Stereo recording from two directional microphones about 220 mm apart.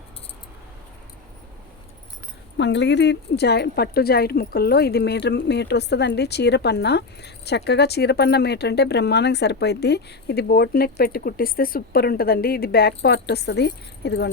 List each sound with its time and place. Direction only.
2.6 s speech: 55° left (ahead or behind)